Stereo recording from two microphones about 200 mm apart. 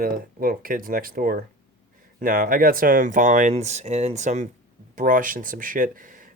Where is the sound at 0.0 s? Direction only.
45° right (ahead or behind).